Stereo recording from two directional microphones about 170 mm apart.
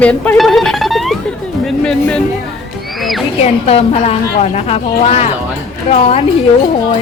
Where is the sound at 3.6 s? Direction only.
35° left (ahead or behind).